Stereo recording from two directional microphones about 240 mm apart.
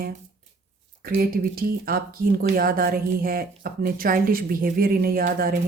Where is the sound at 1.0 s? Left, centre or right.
Right.